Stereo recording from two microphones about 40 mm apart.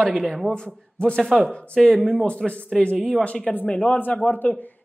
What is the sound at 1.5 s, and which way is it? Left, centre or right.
A man's voice, left.